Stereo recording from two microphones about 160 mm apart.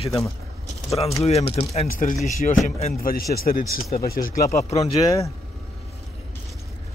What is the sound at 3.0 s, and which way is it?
Speech, 65° left (ahead or behind).